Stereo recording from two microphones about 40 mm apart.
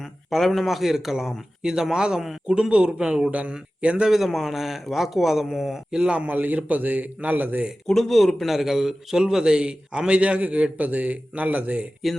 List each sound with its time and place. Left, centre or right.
0.0 s a man's voice: centre
2.6 s a man's voice: right
4.1 s speech: centre
6.0 s a man's voice: right
6.2 s a man's voice: right
7.9 s speech: centre
8.4 s a man's voice: centre; by 11.9 s right